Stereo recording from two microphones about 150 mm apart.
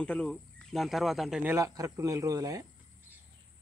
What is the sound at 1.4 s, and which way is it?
A man's voice, 20° right (ahead or behind).